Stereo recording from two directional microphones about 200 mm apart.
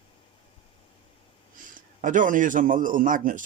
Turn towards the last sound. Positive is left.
turn(degrees=-40)  # may be behind; listen again after turning